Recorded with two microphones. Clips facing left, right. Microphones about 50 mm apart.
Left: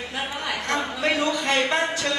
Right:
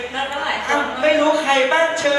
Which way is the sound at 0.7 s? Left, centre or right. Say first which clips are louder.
Right 8 dB; centre.